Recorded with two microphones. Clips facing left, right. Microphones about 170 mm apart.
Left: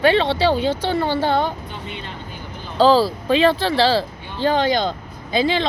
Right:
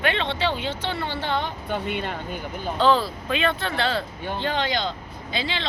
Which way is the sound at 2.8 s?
35° left (ahead or behind).